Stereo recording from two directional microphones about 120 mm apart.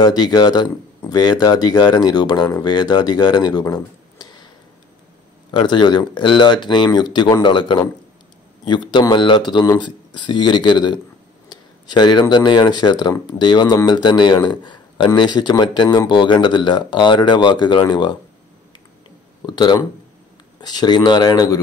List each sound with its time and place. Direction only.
0.0 s speech: 35° left (ahead or behind)
5.5 s speech: 40° left (ahead or behind)
19.4 s speech: 35° left (ahead or behind)